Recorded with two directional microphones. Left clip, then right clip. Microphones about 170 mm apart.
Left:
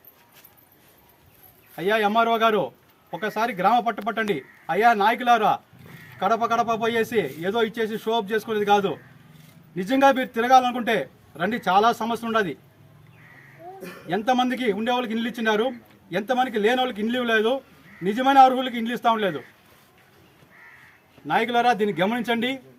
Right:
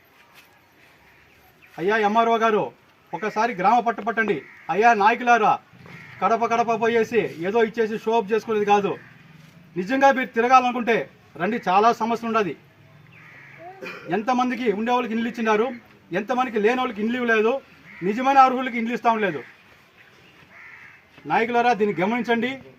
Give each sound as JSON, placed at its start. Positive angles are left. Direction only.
{"t": 1.7, "sound": "a man's voice", "side_deg": 10}
{"t": 14.1, "sound": "a man's voice", "side_deg": 15}
{"t": 21.2, "sound": "a man's voice", "side_deg": 10}